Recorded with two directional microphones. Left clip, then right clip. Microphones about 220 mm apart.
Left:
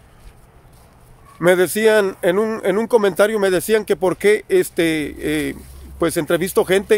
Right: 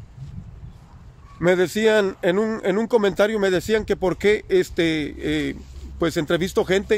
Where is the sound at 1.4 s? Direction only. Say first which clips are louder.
Left 4 dB; 5° left (ahead or behind).